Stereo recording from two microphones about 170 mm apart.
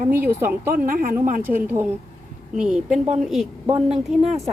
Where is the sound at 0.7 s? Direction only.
55° right (ahead or behind).